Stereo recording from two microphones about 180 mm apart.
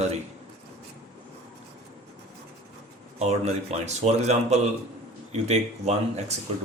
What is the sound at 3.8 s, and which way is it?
Speech, 40° right (ahead or behind).